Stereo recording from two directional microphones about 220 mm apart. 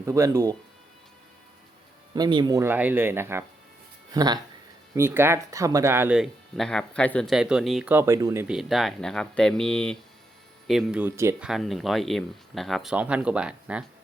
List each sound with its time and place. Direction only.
0.0 s speech: 15° right (ahead or behind)
2.1 s speech: 20° right (ahead or behind)